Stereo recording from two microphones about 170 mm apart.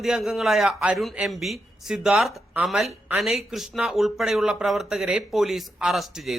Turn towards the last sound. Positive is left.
turn(degrees=0)  # may be behind; listen again after turning